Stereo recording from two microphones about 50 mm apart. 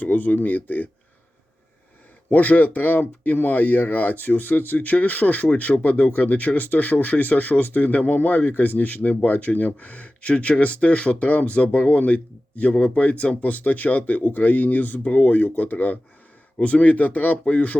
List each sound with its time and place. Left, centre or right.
0.0 s speech: left
2.3 s speech: left
12.7 s speech: centre
13.0 s speech: left